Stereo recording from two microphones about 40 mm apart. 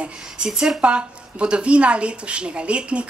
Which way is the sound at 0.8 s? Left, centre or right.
Right.